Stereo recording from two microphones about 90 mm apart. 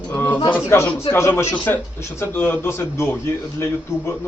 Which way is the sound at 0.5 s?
20° left (ahead or behind).